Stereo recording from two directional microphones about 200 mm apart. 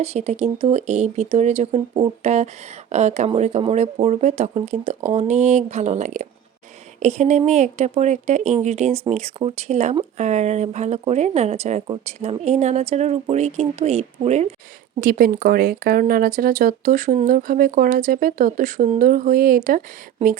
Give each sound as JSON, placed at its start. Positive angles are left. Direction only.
{"t": 0.0, "sound": "speech", "side_deg": -35}
{"t": 15.0, "sound": "speech", "side_deg": -45}